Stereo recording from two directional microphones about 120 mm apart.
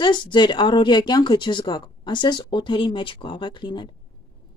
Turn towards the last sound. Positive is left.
turn(degrees=40)  # may be behind; listen again after turning